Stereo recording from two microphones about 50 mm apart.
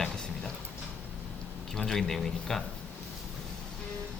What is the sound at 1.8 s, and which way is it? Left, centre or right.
Speech, centre.